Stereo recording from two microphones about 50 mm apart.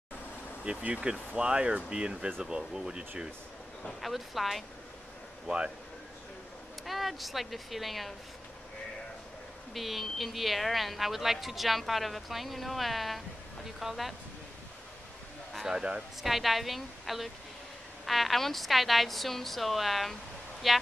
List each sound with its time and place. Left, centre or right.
0.7 s speech: right
4.0 s speech: centre
6.9 s speech: centre
9.8 s speech: centre
15.6 s speech: centre
16.2 s speech: centre